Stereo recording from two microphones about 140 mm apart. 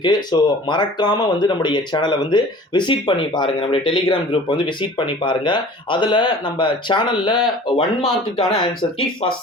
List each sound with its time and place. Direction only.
0.0 s speech: 30° left (ahead or behind)